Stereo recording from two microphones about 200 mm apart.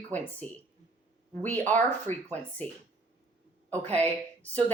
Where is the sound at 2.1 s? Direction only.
40° right (ahead or behind).